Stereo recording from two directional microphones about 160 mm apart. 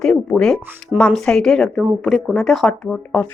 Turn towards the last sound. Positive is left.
turn(degrees=5)  # may be behind; listen again after turning